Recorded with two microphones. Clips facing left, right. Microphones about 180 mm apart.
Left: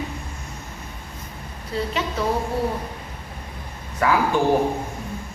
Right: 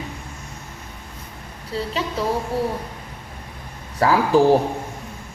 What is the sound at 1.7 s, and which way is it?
Speech, 30° right (ahead or behind).